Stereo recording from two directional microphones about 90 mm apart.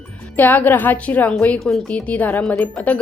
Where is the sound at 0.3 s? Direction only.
20° left (ahead or behind).